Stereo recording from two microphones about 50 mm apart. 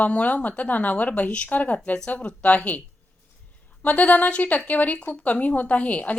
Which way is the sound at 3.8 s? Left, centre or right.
Left.